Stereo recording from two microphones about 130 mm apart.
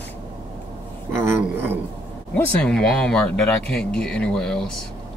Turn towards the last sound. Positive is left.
turn(degrees=5)  # may be behind; listen again after turning